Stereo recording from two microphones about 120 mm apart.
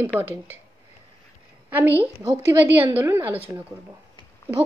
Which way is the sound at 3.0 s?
20° right (ahead or behind).